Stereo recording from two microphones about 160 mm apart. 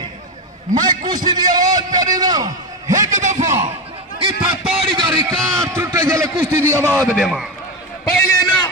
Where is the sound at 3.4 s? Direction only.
15° right (ahead or behind).